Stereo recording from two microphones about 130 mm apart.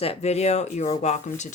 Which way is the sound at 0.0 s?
50° left (ahead or behind).